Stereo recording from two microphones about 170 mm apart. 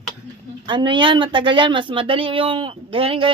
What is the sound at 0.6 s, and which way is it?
Speech, 30° right (ahead or behind).